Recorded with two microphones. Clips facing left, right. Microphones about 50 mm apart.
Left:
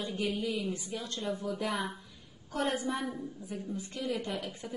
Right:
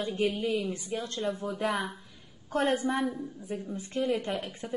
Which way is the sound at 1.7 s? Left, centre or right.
Centre.